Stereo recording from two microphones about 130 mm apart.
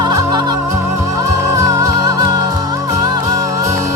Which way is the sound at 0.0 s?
25° right (ahead or behind).